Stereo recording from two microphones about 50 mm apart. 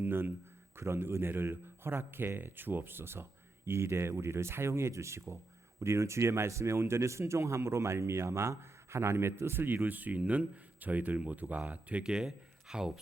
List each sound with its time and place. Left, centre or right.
0.0 s speech: right
12.2 s a man's voice: centre